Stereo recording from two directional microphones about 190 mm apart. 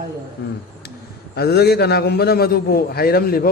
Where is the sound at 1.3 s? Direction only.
60° left (ahead or behind).